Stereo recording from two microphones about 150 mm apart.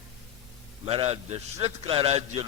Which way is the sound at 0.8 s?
40° right (ahead or behind).